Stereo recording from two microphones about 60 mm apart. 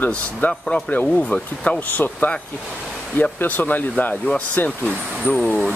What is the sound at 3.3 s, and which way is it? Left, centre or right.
Speech, left.